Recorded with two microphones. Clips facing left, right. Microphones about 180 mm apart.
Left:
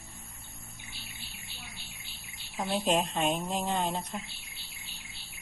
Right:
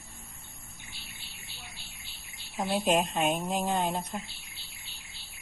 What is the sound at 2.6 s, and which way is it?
Speech, centre (ahead or behind).